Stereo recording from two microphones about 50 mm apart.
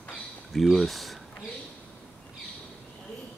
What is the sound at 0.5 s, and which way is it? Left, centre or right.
Speech, centre.